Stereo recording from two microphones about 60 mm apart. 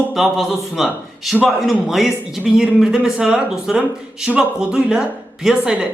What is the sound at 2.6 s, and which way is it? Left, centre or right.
Speech, centre.